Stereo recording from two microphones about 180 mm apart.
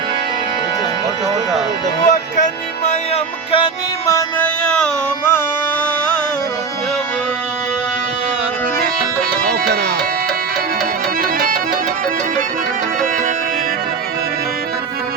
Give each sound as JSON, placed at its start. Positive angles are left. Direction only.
{"t": 2.0, "sound": "music", "side_deg": 45}
{"t": 3.5, "sound": "music", "side_deg": 20}
{"t": 11.2, "sound": "music", "side_deg": -55}